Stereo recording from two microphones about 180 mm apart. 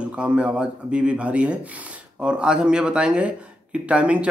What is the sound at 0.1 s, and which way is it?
Speech, 5° right (ahead or behind).